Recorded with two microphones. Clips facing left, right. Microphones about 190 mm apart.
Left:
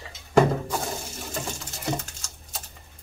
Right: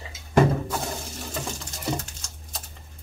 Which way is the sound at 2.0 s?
Centre (ahead or behind).